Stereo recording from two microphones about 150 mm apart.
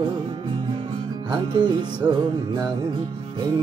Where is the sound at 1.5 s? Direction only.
30° right (ahead or behind).